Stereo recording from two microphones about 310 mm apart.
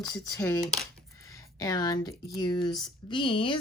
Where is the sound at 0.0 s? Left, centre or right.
Centre.